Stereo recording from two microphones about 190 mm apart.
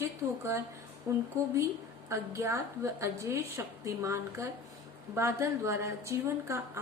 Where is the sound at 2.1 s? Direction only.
15° right (ahead or behind).